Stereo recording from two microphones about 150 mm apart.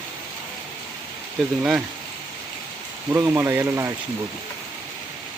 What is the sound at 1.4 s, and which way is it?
Speech, centre (ahead or behind).